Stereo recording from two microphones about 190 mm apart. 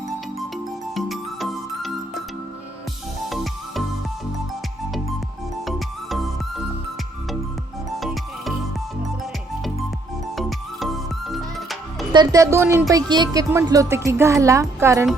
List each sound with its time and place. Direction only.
0.3 s music: centre (ahead or behind)
3.2 s music: centre (ahead or behind)
5.6 s music: centre (ahead or behind)
7.9 s music: centre (ahead or behind)
11.3 s music: centre (ahead or behind)
12.1 s speech: 20° right (ahead or behind)